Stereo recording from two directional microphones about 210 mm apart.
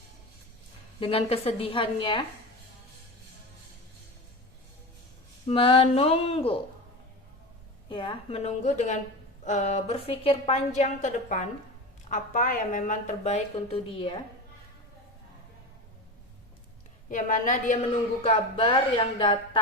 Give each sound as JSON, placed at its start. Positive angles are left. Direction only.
{"t": 0.9, "sound": "a woman's voice", "side_deg": 25}
{"t": 5.5, "sound": "a woman's voice", "side_deg": 25}
{"t": 7.9, "sound": "a woman's voice", "side_deg": 25}
{"t": 17.1, "sound": "a woman's voice", "side_deg": 40}
{"t": 18.2, "sound": "a woman's voice", "side_deg": 25}